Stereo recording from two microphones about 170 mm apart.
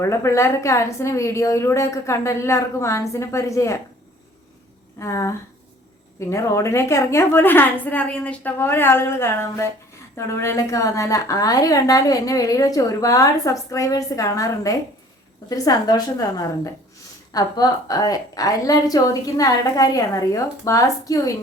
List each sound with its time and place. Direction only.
0.0 s a woman's voice: 15° left (ahead or behind)
4.9 s a woman's voice: 15° left (ahead or behind)